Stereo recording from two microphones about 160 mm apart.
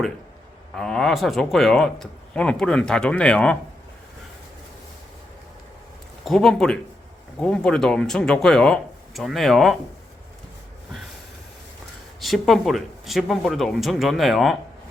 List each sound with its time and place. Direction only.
0.8 s speech: 5° left (ahead or behind)
6.2 s speech: 5° left (ahead or behind)
12.2 s speech: centre (ahead or behind)